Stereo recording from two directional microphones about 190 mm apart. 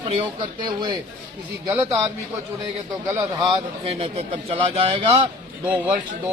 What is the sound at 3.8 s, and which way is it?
Speech, 30° right (ahead or behind).